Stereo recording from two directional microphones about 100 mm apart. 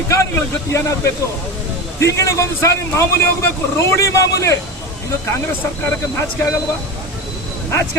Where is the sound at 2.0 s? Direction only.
30° left (ahead or behind).